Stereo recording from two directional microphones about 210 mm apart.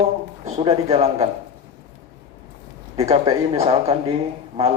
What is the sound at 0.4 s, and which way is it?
Speech, 30° right (ahead or behind).